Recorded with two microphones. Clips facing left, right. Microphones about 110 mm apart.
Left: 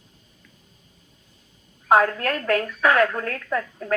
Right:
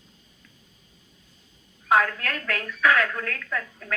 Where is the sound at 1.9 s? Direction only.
35° left (ahead or behind).